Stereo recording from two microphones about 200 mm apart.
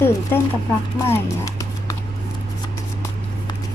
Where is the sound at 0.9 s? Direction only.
15° left (ahead or behind).